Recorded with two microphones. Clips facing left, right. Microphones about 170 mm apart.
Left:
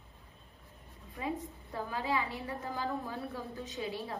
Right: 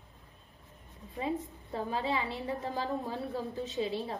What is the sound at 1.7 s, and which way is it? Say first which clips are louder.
A woman's voice: right 2 dB; 20° right (ahead or behind).